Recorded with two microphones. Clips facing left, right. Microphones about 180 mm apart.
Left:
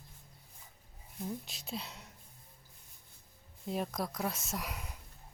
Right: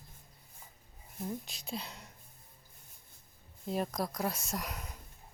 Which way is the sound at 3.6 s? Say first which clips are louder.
Right 2 dB; centre (ahead or behind).